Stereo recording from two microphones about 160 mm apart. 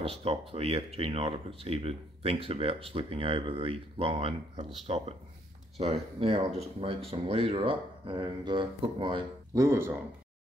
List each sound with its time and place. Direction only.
0.0 s speech: 35° right (ahead or behind)
9.6 s speech: 15° right (ahead or behind)